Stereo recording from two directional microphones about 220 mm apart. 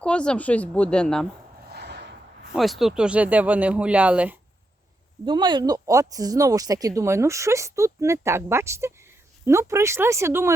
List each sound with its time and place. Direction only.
0.0 s speech: 5° left (ahead or behind)
1.7 s a sound: 50° right (ahead or behind)
2.6 s speech: centre (ahead or behind)
5.2 s speech: 20° right (ahead or behind)